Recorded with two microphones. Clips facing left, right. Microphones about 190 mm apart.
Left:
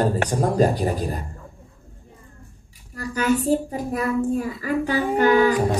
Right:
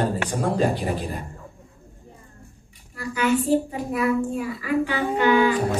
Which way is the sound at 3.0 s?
40° left (ahead or behind).